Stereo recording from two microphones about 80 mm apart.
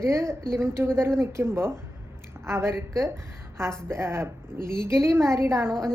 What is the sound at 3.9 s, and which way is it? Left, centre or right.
A woman's voice, right.